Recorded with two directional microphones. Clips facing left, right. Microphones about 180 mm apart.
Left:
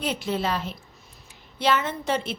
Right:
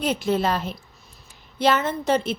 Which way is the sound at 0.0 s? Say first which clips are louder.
Right 5 dB; 45° right (ahead or behind).